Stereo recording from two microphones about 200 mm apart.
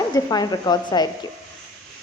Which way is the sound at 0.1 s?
20° left (ahead or behind).